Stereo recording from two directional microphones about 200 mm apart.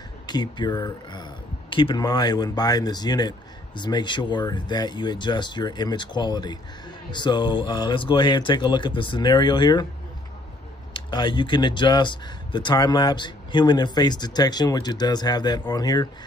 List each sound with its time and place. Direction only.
0.3 s speech: 20° left (ahead or behind)
10.9 s speech: 25° left (ahead or behind)